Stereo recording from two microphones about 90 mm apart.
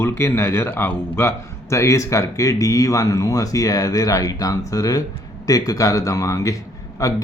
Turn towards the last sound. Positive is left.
turn(degrees=35)  # may be behind; listen again after turning